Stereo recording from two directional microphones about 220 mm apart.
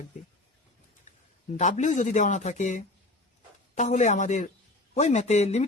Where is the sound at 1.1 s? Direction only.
35° left (ahead or behind).